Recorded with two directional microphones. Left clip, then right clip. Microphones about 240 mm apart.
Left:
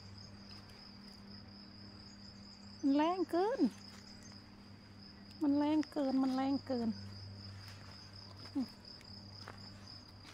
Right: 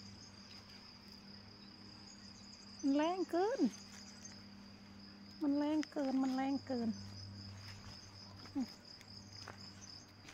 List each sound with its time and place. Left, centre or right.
2.9 s speech: left
5.4 s speech: left